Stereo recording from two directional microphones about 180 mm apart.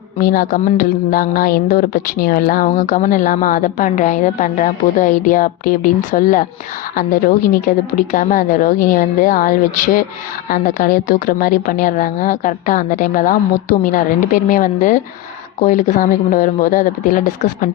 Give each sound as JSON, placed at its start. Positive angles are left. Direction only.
{"t": 0.2, "sound": "speech", "side_deg": 50}